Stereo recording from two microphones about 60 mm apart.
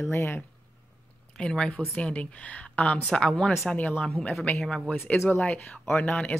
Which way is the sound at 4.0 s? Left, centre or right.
Centre.